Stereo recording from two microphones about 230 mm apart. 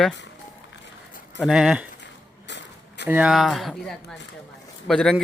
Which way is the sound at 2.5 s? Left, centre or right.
Left.